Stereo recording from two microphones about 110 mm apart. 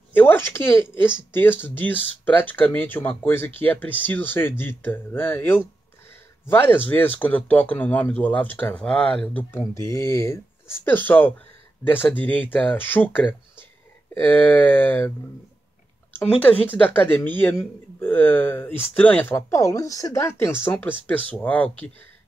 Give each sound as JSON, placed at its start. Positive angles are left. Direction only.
{"t": 0.1, "sound": "speech", "side_deg": 20}
{"t": 9.8, "sound": "speech", "side_deg": 30}
{"t": 16.2, "sound": "speech", "side_deg": 15}